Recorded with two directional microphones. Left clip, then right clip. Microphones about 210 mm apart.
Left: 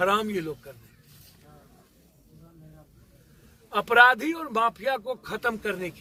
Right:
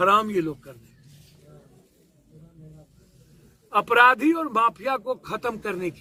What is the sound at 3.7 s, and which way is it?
Speech, 10° left (ahead or behind).